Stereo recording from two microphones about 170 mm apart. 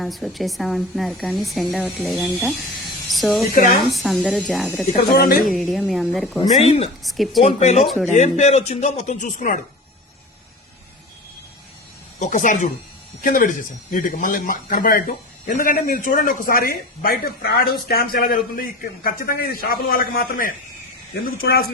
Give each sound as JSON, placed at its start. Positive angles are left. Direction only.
{"t": 0.0, "sound": "a woman's voice", "side_deg": 0}
{"t": 3.5, "sound": "speech", "side_deg": 55}
{"t": 3.8, "sound": "a woman's voice", "side_deg": 0}
{"t": 4.9, "sound": "speech", "side_deg": 65}
{"t": 5.5, "sound": "a woman's voice", "side_deg": 0}
{"t": 6.6, "sound": "speech", "side_deg": 35}
{"t": 7.0, "sound": "a woman's voice", "side_deg": 0}
{"t": 7.4, "sound": "speech", "side_deg": 40}
{"t": 7.9, "sound": "a woman's voice", "side_deg": 0}
{"t": 8.1, "sound": "speech", "side_deg": 40}
{"t": 12.2, "sound": "speech", "side_deg": 50}